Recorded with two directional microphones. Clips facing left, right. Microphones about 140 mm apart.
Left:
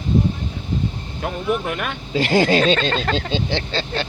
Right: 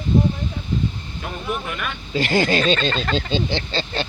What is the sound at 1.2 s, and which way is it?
Speech, 65° left (ahead or behind).